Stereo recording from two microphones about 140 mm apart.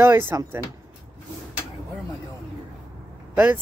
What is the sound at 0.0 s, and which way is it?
Speech, 15° right (ahead or behind).